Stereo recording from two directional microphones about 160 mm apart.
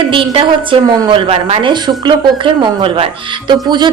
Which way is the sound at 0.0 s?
35° right (ahead or behind).